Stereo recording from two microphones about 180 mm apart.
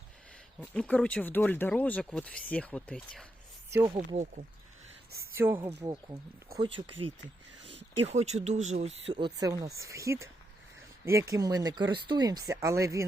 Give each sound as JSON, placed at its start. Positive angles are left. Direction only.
{"t": 0.6, "sound": "speech", "side_deg": 5}
{"t": 3.7, "sound": "speech", "side_deg": -15}
{"t": 3.9, "sound": "speech", "side_deg": -40}
{"t": 5.3, "sound": "speech", "side_deg": -10}
{"t": 7.2, "sound": "a sound", "side_deg": -90}
{"t": 8.0, "sound": "speech", "side_deg": -40}